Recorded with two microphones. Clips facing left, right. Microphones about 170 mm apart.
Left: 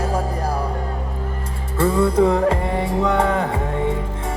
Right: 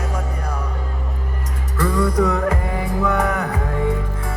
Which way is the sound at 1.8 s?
25° left (ahead or behind).